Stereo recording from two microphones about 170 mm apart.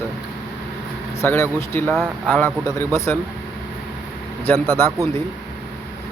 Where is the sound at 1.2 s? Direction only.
15° left (ahead or behind).